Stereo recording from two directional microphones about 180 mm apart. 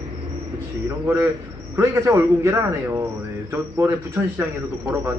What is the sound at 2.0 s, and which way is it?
Speech, 15° right (ahead or behind).